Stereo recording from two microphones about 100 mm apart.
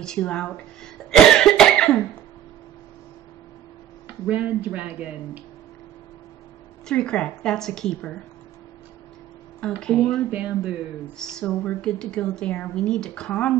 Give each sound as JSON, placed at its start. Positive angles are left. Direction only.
{"t": 0.0, "sound": "speech", "side_deg": 10}
{"t": 1.1, "sound": "cough", "side_deg": 5}
{"t": 4.3, "sound": "speech", "side_deg": -15}
{"t": 6.9, "sound": "speech", "side_deg": 10}
{"t": 9.6, "sound": "speech", "side_deg": 10}
{"t": 10.3, "sound": "speech", "side_deg": -15}
{"t": 11.1, "sound": "speech", "side_deg": 10}